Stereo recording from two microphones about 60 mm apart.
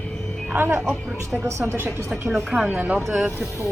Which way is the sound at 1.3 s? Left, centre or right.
Right.